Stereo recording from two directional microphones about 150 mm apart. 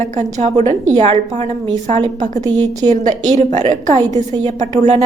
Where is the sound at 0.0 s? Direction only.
50° right (ahead or behind).